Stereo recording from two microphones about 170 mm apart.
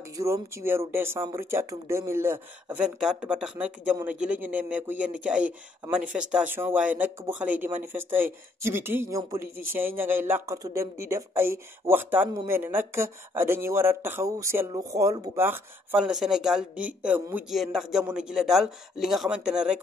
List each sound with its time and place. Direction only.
0.2 s speech: 15° right (ahead or behind)
15.4 s speech: 10° right (ahead or behind)